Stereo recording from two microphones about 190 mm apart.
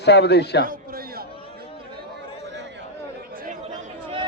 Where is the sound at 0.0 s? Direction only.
60° left (ahead or behind).